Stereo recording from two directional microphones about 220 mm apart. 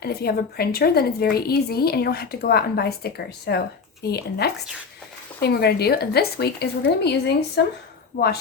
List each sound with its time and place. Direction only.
0.0 s speech: 45° left (ahead or behind)